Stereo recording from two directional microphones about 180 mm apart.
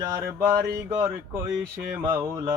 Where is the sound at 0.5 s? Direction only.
15° right (ahead or behind).